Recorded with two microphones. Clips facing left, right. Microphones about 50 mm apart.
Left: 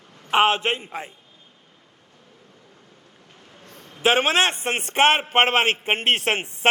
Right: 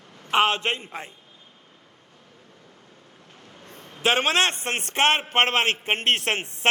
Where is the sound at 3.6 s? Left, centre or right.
Right.